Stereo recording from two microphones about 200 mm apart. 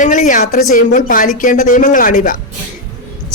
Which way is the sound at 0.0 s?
40° left (ahead or behind).